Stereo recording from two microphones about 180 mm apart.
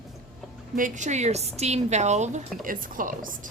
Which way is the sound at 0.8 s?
45° right (ahead or behind).